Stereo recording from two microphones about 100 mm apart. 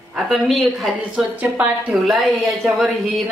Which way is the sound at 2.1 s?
Centre (ahead or behind).